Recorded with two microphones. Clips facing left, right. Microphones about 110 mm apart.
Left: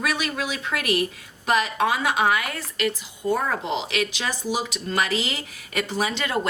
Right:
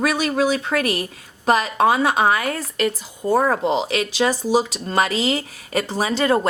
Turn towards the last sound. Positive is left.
turn(degrees=-35)  # may be behind; listen again after turning